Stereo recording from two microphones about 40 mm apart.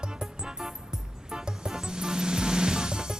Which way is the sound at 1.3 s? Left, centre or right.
Centre.